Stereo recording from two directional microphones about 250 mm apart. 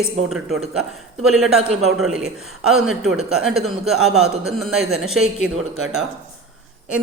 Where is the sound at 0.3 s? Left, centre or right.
Centre.